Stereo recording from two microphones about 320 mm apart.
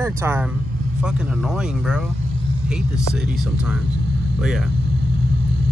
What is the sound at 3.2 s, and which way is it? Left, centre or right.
Speech, centre.